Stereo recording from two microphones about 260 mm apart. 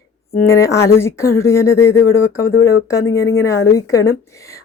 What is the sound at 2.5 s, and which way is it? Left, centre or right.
Speech, left.